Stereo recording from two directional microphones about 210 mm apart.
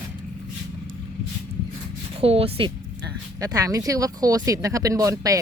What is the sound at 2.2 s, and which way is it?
Speech, 30° right (ahead or behind).